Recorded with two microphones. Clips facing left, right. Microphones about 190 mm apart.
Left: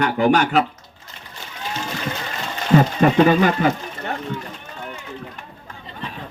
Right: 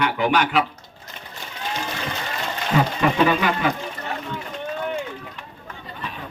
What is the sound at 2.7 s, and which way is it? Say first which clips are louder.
A man's voice: left 5 dB; 45° left (ahead or behind).